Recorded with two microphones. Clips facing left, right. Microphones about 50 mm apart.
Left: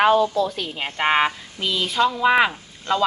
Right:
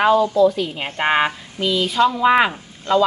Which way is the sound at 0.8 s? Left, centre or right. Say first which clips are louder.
Left 4 dB; centre.